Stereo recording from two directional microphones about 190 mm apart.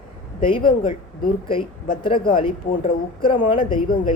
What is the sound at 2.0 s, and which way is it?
Speech, 25° left (ahead or behind).